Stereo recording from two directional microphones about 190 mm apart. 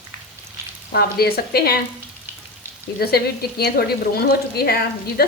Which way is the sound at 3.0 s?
55° left (ahead or behind).